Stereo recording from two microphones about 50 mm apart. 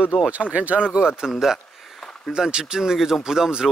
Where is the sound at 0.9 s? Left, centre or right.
Centre.